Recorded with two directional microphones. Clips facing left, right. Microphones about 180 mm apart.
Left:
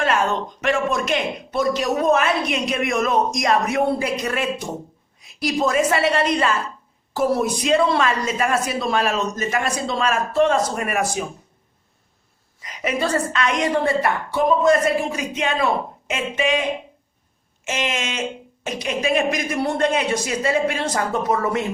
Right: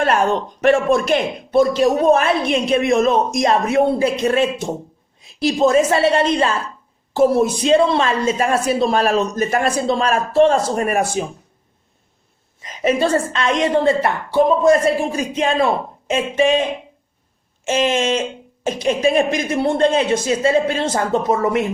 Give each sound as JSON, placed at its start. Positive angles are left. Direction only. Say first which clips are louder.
{"t": 0.2, "sound": "a woman's voice", "louder": "right 5 dB", "side_deg": -35}
{"t": 12.5, "sound": "speech", "louder": "right 6 dB", "side_deg": -25}
{"t": 17.7, "sound": "speech", "louder": "right 8 dB", "side_deg": -30}